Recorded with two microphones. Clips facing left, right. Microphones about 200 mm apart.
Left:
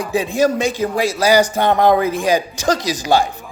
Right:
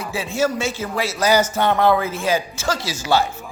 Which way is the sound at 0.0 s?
15° left (ahead or behind).